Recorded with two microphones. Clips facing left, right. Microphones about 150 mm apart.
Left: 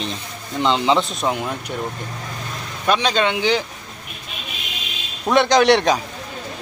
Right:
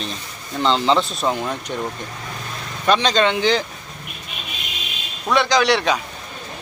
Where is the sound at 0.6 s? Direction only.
15° left (ahead or behind).